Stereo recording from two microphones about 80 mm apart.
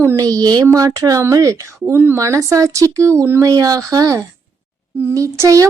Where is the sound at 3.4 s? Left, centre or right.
Right.